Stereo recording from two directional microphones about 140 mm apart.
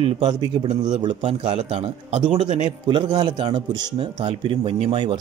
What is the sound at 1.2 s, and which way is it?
A man's voice, 40° right (ahead or behind).